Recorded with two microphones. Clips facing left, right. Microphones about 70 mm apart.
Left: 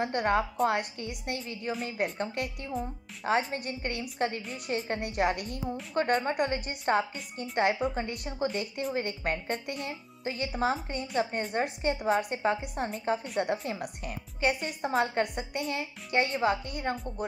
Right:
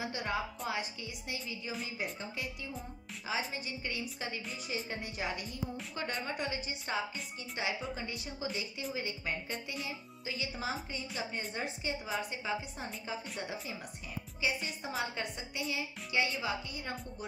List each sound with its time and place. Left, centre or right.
0.0 s a woman's voice: left
14.8 s a woman's voice: left